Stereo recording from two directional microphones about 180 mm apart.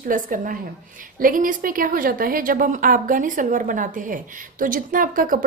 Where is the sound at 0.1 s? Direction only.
50° right (ahead or behind).